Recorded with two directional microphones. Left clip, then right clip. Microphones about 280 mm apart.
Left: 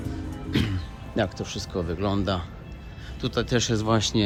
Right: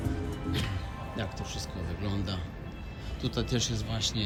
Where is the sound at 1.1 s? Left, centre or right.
Centre.